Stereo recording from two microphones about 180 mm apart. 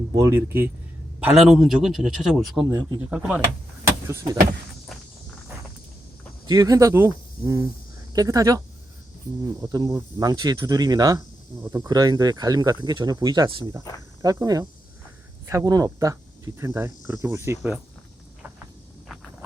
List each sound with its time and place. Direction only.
0.2 s a man's voice: 15° right (ahead or behind)
4.9 s walk: centre (ahead or behind)
6.5 s speech: 20° right (ahead or behind)
19.0 s a sound: centre (ahead or behind)